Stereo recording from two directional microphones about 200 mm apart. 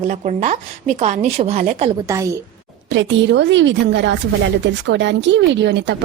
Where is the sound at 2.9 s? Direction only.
65° right (ahead or behind).